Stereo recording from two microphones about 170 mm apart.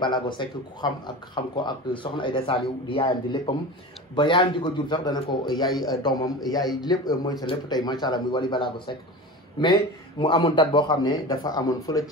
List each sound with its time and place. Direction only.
0.0 s speech: 25° left (ahead or behind)